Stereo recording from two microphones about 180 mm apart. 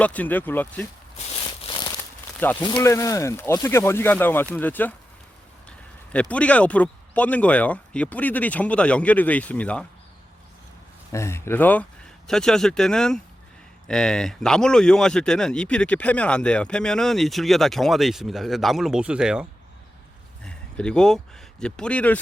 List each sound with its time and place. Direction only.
0.0 s speech: 10° left (ahead or behind)
1.5 s crumpling: 25° left (ahead or behind)
2.4 s speech: 10° left (ahead or behind)
11.1 s speech: 15° left (ahead or behind); by 19.5 s 5° right (ahead or behind)
20.4 s a sound: 5° left (ahead or behind)
21.6 s speech: 5° left (ahead or behind)